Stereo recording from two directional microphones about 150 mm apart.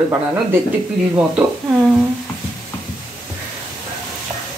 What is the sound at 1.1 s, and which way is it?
Speech, 10° right (ahead or behind).